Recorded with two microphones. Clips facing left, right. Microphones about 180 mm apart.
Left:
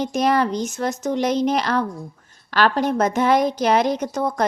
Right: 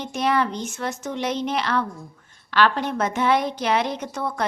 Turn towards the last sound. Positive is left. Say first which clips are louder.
# left 5 dB
turn(degrees=40)  # may be behind; listen again after turning